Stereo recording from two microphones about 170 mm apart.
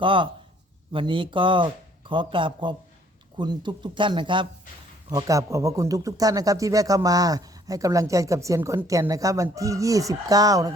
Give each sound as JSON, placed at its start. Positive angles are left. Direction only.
{"t": 0.0, "sound": "a man's voice", "side_deg": -30}
{"t": 5.0, "sound": "a man's voice", "side_deg": -20}